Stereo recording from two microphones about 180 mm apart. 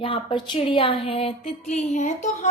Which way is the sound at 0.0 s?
30° left (ahead or behind).